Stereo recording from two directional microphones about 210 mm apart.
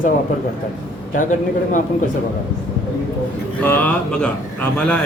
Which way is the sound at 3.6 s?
10° left (ahead or behind).